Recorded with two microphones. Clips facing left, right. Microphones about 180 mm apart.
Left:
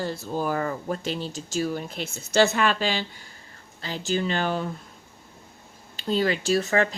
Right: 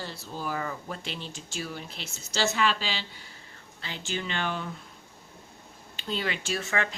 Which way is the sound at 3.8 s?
40° left (ahead or behind).